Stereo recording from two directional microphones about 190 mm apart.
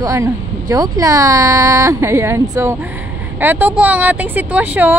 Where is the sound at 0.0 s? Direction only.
15° right (ahead or behind).